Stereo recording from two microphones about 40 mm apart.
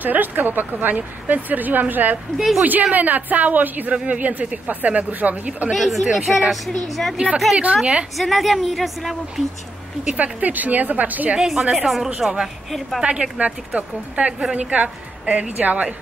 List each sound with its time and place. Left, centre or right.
0.0 s speech: right
2.3 s speech: centre
2.6 s speech: right
3.9 s a woman's voice: right
5.7 s a woman's voice: centre
7.2 s a woman's voice: right
8.2 s a woman's voice: centre
10.1 s speech: right
11.3 s speech: centre
13.0 s a woman's voice: right